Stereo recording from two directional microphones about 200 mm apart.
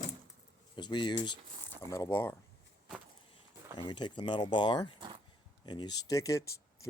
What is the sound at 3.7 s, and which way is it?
Speech, 20° left (ahead or behind).